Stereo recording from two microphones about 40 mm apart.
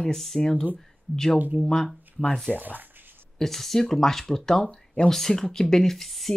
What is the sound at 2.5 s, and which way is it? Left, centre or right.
Speech, centre.